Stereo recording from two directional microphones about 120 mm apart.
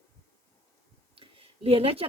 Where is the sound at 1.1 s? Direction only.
50° right (ahead or behind).